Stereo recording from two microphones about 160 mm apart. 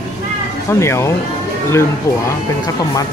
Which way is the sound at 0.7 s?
15° left (ahead or behind).